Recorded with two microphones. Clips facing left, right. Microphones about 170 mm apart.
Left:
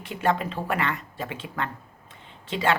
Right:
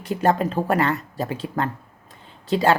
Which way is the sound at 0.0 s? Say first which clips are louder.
Right 5 dB; 40° right (ahead or behind).